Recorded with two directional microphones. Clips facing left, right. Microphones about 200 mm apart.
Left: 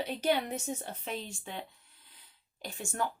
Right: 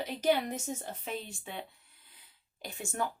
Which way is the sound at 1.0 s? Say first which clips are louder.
Even; 5° right (ahead or behind).